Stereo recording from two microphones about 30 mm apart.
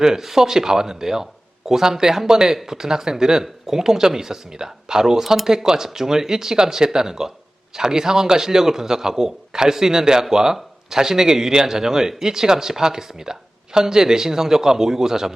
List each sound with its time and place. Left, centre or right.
0.0 s a man's voice: centre